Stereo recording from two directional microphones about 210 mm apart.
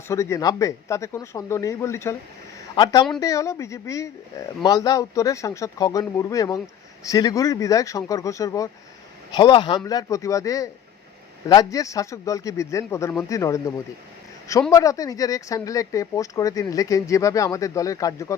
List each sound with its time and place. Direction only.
0.1 s speech: 15° left (ahead or behind)